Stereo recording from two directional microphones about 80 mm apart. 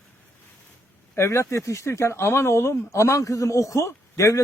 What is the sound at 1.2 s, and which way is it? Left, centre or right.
Speech, left.